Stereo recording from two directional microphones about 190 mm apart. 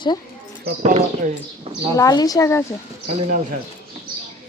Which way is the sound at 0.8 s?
35° right (ahead or behind).